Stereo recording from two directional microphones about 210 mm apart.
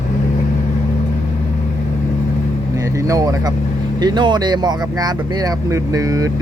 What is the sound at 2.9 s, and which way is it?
Vehicle, 15° right (ahead or behind).